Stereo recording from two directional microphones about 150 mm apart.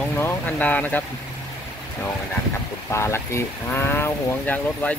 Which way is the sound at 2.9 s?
20° left (ahead or behind).